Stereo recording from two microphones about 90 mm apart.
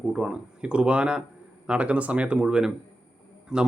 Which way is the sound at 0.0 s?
5° right (ahead or behind).